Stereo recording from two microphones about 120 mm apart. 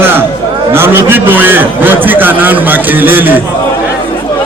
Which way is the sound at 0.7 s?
20° right (ahead or behind).